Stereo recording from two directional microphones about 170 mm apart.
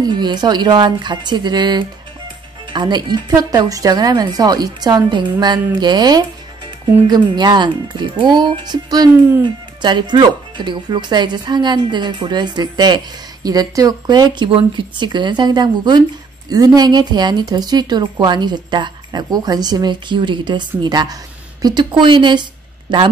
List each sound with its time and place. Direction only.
0.0 s speech: 25° right (ahead or behind)